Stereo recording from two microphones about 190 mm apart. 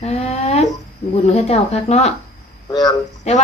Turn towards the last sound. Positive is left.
turn(degrees=35)  # may be behind; listen again after turning